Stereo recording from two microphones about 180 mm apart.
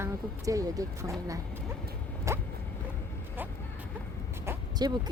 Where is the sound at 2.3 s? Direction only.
15° right (ahead or behind).